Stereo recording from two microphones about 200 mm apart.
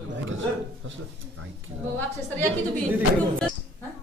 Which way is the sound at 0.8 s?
75° right (ahead or behind).